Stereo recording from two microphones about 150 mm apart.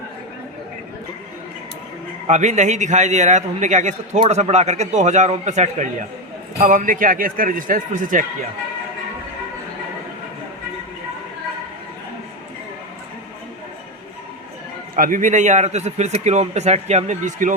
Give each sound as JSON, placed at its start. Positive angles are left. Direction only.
{"t": 2.2, "sound": "a man's voice", "side_deg": -50}
{"t": 6.6, "sound": "speech", "side_deg": -65}
{"t": 14.9, "sound": "a man's voice", "side_deg": -65}